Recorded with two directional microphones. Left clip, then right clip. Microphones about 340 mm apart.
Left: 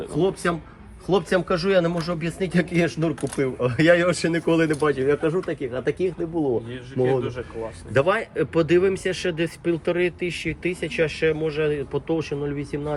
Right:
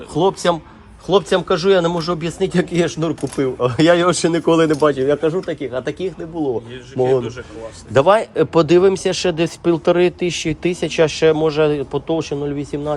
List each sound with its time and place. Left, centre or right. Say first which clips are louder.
0.2 s a man's voice: right 7 dB; centre